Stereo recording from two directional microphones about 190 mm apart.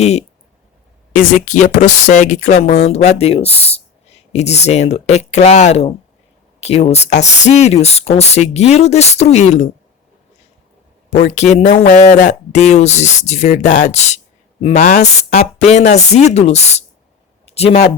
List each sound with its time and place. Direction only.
0.0 s speech: 35° left (ahead or behind)
11.1 s speech: 35° left (ahead or behind)